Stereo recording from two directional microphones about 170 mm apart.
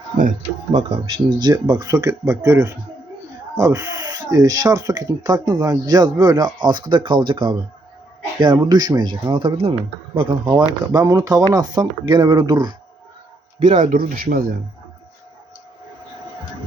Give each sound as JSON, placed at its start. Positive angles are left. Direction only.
{"t": 0.9, "sound": "speech", "side_deg": -30}
{"t": 13.6, "sound": "speech", "side_deg": -45}